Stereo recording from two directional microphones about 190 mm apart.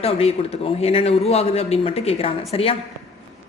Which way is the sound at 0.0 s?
35° left (ahead or behind).